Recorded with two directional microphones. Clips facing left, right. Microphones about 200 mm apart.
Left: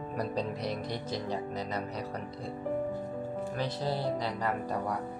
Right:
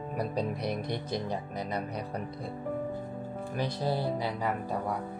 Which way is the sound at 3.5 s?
15° right (ahead or behind).